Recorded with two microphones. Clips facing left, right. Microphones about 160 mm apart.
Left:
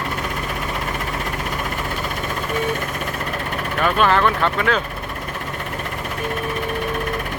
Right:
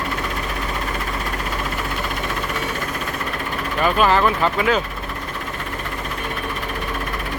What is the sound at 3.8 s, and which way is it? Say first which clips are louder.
Speech: even; 5° right (ahead or behind).